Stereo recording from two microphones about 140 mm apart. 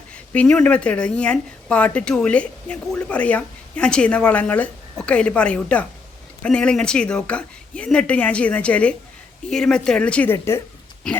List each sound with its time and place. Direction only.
0.1 s speech: 10° left (ahead or behind)